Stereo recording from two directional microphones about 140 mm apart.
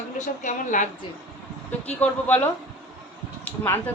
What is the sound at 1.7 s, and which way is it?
Speech, 10° left (ahead or behind).